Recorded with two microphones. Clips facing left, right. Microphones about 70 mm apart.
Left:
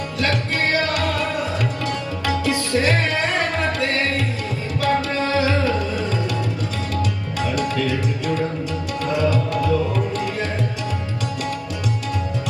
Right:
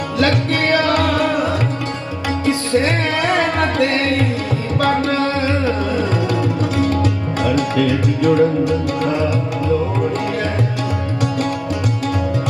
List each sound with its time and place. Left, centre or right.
0.9 s music: right
2.4 s music: right
4.8 s music: right
7.4 s music: right
8.4 s music: right
9.3 s tabla: centre